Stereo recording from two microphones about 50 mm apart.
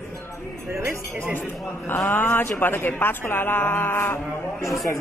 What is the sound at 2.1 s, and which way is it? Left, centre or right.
Speech, left.